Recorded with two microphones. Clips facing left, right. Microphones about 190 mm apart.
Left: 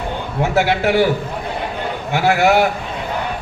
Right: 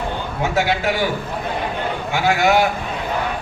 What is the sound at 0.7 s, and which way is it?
Speech, 65° left (ahead or behind).